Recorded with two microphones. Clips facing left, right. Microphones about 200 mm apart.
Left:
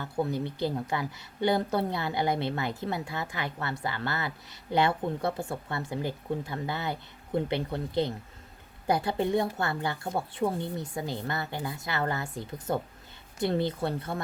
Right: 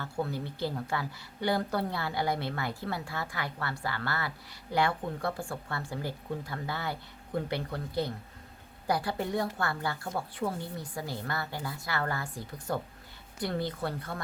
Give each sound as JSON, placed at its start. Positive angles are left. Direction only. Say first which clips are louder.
{"t": 0.0, "sound": "a woman's voice", "louder": "left 4 dB", "side_deg": 20}